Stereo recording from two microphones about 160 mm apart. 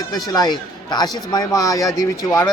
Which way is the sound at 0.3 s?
25° left (ahead or behind).